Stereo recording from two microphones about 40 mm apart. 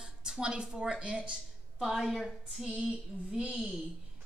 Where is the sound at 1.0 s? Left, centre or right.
Right.